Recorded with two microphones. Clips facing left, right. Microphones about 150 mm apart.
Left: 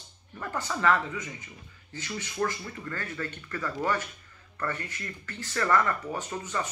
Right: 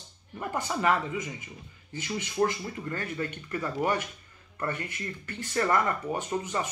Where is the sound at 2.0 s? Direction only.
15° right (ahead or behind).